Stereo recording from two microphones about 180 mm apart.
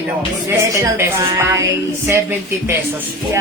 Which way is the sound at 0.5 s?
15° right (ahead or behind).